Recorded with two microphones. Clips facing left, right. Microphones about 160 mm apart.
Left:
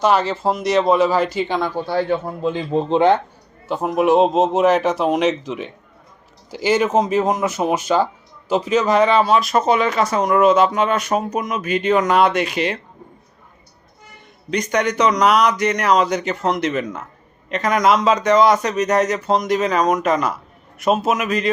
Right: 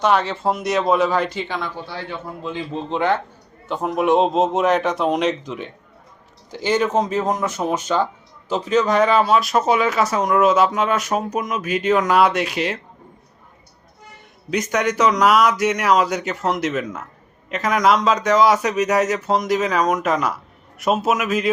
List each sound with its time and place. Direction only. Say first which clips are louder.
0.0 s speech: left 2 dB; centre (ahead or behind)
1.6 s a man's voice: left 9 dB; 40° left (ahead or behind)
3.7 s speech: left 2 dB; 5° left (ahead or behind)
14.5 s speech: left 1 dB; centre (ahead or behind)